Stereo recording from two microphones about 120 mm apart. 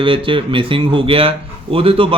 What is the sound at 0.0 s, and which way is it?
Speech, 45° right (ahead or behind).